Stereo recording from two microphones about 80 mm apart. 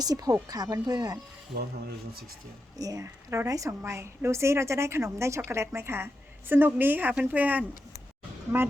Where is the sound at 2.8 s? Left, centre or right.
Right.